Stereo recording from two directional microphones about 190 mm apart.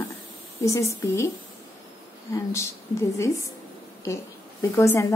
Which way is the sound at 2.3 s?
15° left (ahead or behind).